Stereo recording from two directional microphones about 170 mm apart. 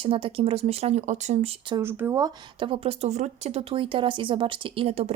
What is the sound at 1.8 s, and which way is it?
Speech, 15° right (ahead or behind).